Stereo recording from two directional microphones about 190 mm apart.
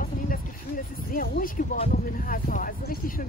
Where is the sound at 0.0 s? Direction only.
45° left (ahead or behind).